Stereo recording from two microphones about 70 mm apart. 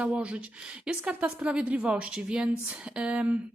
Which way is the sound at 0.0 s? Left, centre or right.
Centre.